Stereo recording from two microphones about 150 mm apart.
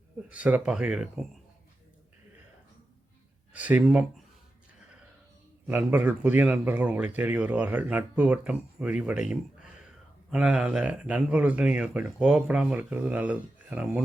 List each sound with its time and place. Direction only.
0.3 s speech: 10° right (ahead or behind)
3.5 s speech: 10° right (ahead or behind)
5.6 s speech: 10° right (ahead or behind)